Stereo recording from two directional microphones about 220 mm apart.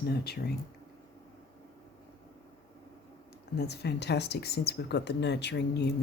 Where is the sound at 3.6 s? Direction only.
50° left (ahead or behind).